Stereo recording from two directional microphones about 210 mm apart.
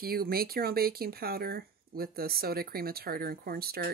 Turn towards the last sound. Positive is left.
turn(degrees=-45)  # may be behind; listen again after turning